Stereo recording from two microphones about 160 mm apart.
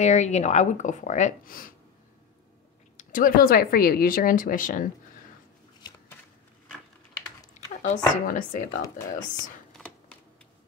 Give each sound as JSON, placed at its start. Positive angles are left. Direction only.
{"t": 0.0, "sound": "speech", "side_deg": 45}
{"t": 3.0, "sound": "speech", "side_deg": 55}
{"t": 7.8, "sound": "speech", "side_deg": 55}
{"t": 9.7, "sound": "computer keyboard", "side_deg": 5}